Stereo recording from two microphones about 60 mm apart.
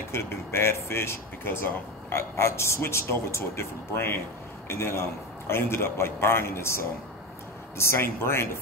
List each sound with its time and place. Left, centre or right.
0.1 s speech: left